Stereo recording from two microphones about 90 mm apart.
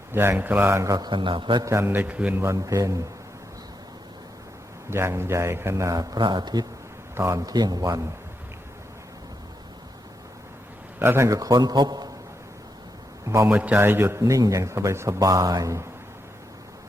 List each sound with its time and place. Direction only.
0.1 s a man's voice: 25° right (ahead or behind); by 1.1 s 40° right (ahead or behind)
1.1 s a man's voice: 65° right (ahead or behind)
1.6 s a man's voice: 30° right (ahead or behind); by 2.4 s 15° right (ahead or behind)
2.4 s a man's voice: 35° right (ahead or behind)
4.9 s a man's voice: 30° right (ahead or behind); by 6.7 s 50° right (ahead or behind)
7.2 s a man's voice: 35° right (ahead or behind)
11.0 s a man's voice: 25° right (ahead or behind)
11.3 s a man's voice: 40° right (ahead or behind)
13.2 s a man's voice: 30° right (ahead or behind)
13.6 s a man's voice: 20° right (ahead or behind); by 15.9 s 35° right (ahead or behind)